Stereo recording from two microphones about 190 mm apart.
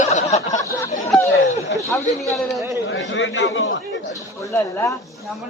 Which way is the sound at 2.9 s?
75° left (ahead or behind).